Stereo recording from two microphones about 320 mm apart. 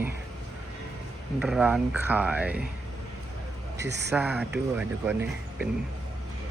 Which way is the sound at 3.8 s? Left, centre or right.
Right.